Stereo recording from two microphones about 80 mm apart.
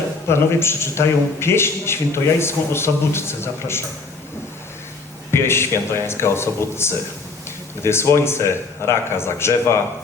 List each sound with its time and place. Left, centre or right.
0.3 s a man's voice: left
5.3 s a man's voice: left